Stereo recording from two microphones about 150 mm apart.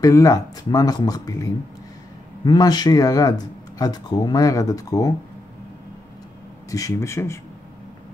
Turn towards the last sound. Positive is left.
turn(degrees=20)  # may be behind; listen again after turning